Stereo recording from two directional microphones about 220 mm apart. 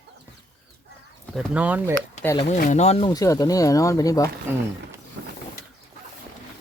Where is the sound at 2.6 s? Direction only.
30° left (ahead or behind); by 4.3 s 15° left (ahead or behind).